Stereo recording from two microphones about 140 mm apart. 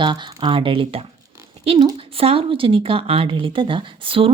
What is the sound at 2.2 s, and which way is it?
A woman's voice, 40° right (ahead or behind).